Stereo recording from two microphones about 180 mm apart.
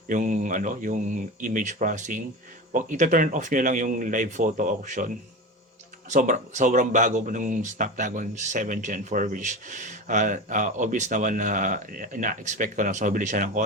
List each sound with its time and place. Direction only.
0.1 s speech: 45° right (ahead or behind)